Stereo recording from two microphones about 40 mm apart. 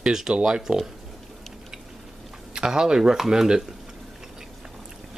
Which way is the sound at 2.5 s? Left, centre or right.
Centre.